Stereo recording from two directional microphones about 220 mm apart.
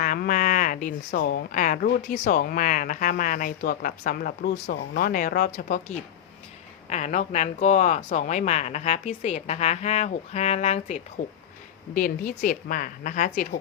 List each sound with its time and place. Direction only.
0.0 s speech: 40° left (ahead or behind)